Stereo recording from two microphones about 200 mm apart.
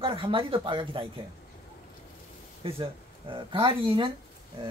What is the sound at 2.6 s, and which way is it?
Speech, 25° right (ahead or behind).